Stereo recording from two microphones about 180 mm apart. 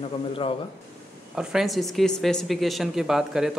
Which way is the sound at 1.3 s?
5° right (ahead or behind).